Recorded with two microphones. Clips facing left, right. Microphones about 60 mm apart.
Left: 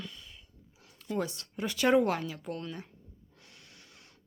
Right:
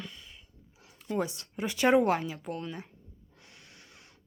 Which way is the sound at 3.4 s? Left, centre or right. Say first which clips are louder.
Right 2 dB; right.